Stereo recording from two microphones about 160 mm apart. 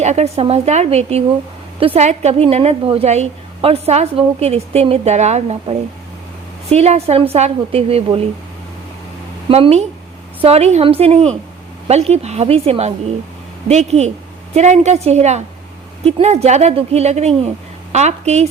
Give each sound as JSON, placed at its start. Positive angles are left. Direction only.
{"t": 0.0, "sound": "a woman's voice", "side_deg": -45}
{"t": 9.5, "sound": "a woman's voice", "side_deg": -40}